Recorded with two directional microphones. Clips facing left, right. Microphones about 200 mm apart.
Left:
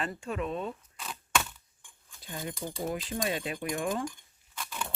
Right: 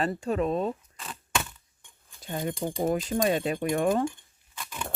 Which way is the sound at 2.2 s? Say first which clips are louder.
Right 7 dB; 60° right (ahead or behind).